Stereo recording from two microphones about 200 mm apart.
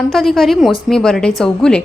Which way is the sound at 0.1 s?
Centre (ahead or behind).